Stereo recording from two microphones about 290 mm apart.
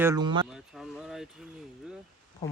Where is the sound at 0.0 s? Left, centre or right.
Centre.